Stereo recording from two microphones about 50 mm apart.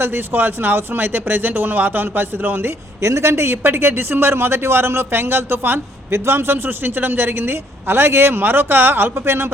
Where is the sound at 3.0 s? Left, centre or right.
Right.